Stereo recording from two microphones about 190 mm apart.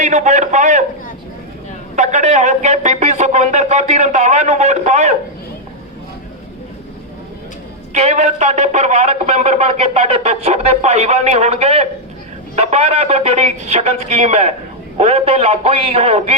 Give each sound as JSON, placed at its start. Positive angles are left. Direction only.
{"t": 0.0, "sound": "speech", "side_deg": -35}
{"t": 2.0, "sound": "a sound", "side_deg": -35}
{"t": 7.9, "sound": "speech", "side_deg": -35}